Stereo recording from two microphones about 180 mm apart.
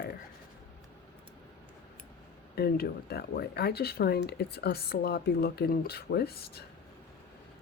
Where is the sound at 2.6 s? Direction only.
60° left (ahead or behind).